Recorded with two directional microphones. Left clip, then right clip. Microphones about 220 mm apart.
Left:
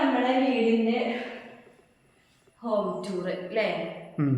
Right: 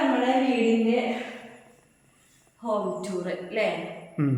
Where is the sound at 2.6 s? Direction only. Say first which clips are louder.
Even; 5° left (ahead or behind).